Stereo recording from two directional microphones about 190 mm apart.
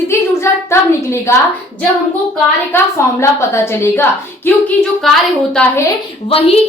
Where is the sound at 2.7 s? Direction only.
15° left (ahead or behind).